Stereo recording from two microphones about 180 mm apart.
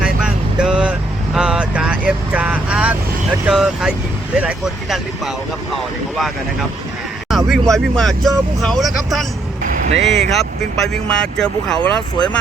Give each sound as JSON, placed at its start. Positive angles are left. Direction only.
{"t": 0.6, "sound": "vehicle", "side_deg": -5}
{"t": 3.4, "sound": "speech", "side_deg": -5}
{"t": 7.3, "sound": "speech", "side_deg": 0}
{"t": 9.7, "sound": "vehicle", "side_deg": -40}
{"t": 10.2, "sound": "speech", "side_deg": 0}